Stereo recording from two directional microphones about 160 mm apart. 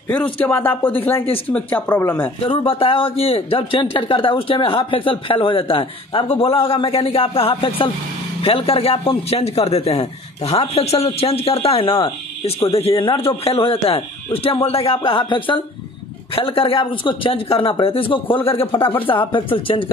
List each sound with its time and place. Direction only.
0.1 s speech: 10° left (ahead or behind)
2.4 s a man's voice: 35° left (ahead or behind)